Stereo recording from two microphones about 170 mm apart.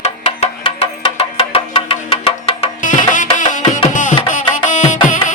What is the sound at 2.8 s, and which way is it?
Music, 50° left (ahead or behind).